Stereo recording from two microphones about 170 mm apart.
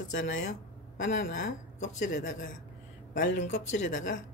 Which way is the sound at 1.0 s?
50° left (ahead or behind).